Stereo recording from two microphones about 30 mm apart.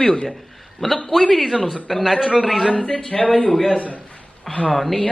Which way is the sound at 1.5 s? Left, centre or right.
Centre.